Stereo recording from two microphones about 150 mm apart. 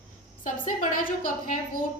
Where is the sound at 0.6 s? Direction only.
65° left (ahead or behind).